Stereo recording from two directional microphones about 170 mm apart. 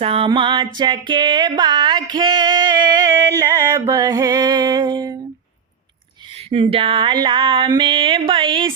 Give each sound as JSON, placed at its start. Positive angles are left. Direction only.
{"t": 0.0, "sound": "music", "side_deg": -30}
{"t": 6.5, "sound": "music", "side_deg": -35}